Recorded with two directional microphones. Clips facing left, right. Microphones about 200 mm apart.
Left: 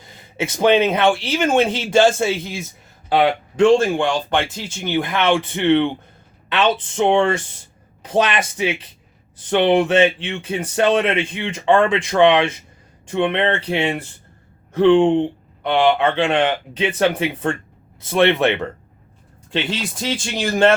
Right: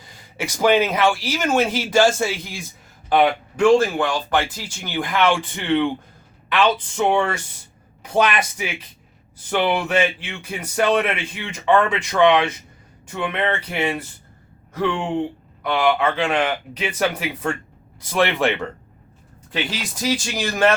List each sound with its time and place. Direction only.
0.1 s a man's voice: 25° left (ahead or behind)